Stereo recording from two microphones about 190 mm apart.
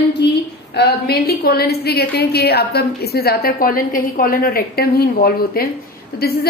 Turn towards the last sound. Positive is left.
turn(degrees=55)  # may be behind; listen again after turning